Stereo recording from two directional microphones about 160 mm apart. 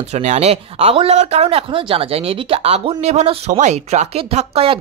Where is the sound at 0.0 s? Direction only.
45° right (ahead or behind).